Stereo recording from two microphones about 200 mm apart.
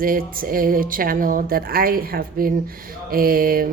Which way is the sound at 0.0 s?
45° right (ahead or behind).